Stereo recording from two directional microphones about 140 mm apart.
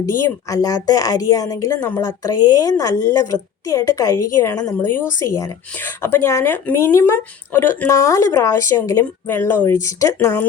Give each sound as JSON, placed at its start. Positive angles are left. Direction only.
{"t": 0.0, "sound": "speech", "side_deg": 20}